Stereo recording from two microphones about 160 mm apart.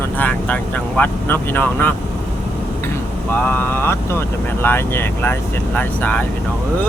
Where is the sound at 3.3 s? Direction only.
10° left (ahead or behind).